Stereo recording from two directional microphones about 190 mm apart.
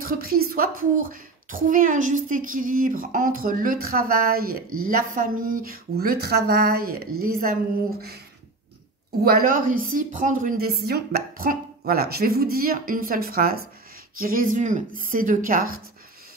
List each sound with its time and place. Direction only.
0.0 s a woman's voice: 50° right (ahead or behind)
9.2 s a woman's voice: 50° right (ahead or behind)